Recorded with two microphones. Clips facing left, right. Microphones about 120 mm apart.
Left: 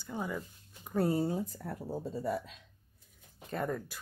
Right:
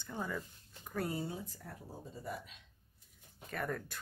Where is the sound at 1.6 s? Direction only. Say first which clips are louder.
Left 11 dB; 60° left (ahead or behind); by 2.5 s 80° left.